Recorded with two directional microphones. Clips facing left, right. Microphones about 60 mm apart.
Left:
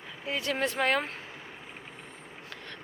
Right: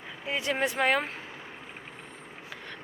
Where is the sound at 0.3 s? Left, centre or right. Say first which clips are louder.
Right 1 dB; centre.